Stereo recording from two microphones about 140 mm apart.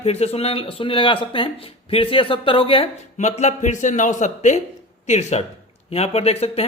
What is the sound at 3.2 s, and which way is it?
A man's voice, 55° left (ahead or behind).